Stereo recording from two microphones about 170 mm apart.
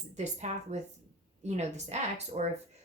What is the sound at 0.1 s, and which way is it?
Speech, 40° right (ahead or behind).